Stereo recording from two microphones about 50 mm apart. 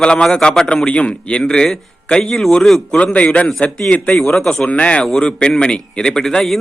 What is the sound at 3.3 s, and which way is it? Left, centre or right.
A man's voice, centre.